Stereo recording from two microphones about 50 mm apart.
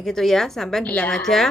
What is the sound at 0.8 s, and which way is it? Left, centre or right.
Speech, left.